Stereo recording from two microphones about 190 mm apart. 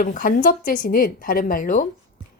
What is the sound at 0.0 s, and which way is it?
A woman's voice, 45° left (ahead or behind).